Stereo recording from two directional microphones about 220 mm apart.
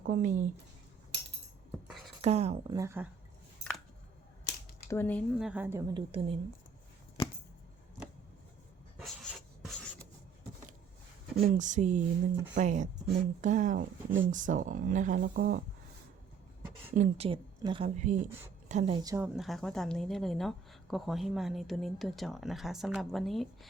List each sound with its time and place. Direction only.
0.1 s speech: 35° right (ahead or behind)
2.2 s a woman's voice: 30° right (ahead or behind)
2.7 s a woman's voice: 10° right (ahead or behind)
4.9 s speech: 10° left (ahead or behind)
5.4 s a woman's voice: 5° right (ahead or behind)
5.9 s a woman's voice: 25° right (ahead or behind)
9.0 s writing: centre (ahead or behind)
11.4 s speech: 35° right (ahead or behind)
16.9 s a woman's voice: 30° right (ahead or behind); by 19.3 s 15° right (ahead or behind)
19.4 s a woman's voice: centre (ahead or behind)